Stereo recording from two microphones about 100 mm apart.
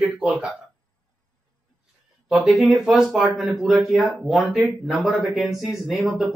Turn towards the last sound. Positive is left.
turn(degrees=0)  # may be behind; listen again after turning